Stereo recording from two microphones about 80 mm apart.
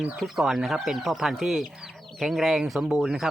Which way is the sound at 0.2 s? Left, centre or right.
Centre.